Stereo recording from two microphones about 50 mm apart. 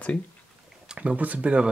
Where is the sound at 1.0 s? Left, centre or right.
Right.